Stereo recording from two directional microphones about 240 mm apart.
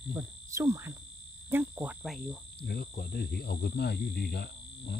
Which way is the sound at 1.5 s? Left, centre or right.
Centre.